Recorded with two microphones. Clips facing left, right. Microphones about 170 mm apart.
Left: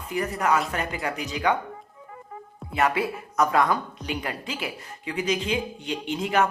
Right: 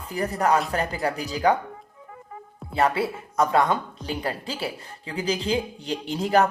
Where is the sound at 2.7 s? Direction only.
30° right (ahead or behind).